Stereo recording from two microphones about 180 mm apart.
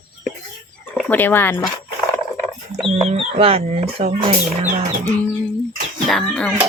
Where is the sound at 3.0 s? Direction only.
35° right (ahead or behind).